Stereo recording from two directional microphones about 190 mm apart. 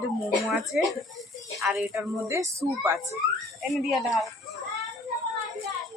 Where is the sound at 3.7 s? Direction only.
Centre (ahead or behind).